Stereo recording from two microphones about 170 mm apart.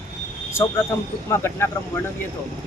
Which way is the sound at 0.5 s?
15° left (ahead or behind).